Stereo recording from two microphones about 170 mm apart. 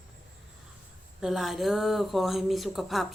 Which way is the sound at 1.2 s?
Centre (ahead or behind).